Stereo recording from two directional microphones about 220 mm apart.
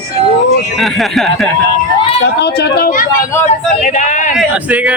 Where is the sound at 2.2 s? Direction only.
50° left (ahead or behind); by 4.3 s 35° left (ahead or behind).